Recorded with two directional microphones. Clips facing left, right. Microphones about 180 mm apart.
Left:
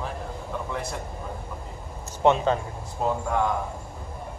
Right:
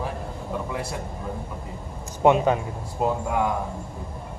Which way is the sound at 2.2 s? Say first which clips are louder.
Right 2 dB; 15° right (ahead or behind).